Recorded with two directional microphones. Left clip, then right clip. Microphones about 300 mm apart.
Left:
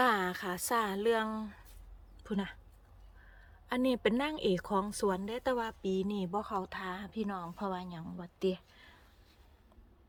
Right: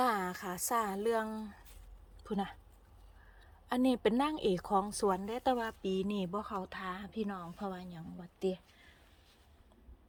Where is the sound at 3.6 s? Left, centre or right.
Centre.